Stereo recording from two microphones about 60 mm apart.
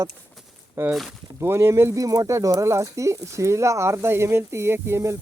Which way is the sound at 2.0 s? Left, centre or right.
Right.